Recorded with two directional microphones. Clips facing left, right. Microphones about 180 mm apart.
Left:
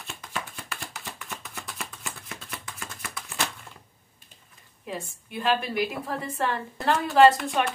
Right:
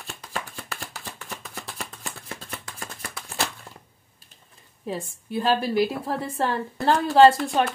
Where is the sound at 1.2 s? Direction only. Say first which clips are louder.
Right 2 dB; 35° right (ahead or behind).